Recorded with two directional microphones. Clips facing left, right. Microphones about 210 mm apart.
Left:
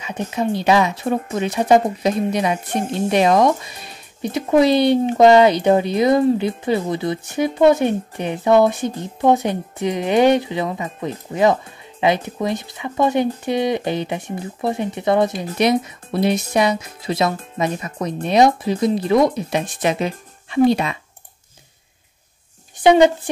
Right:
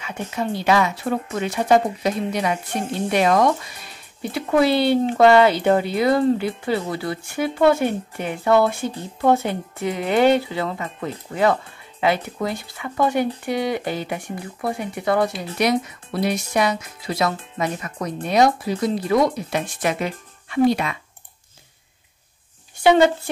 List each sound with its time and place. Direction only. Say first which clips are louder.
0.0 s speech: left 4 dB; 20° left (ahead or behind)
22.8 s speech: left 3 dB; 15° left (ahead or behind)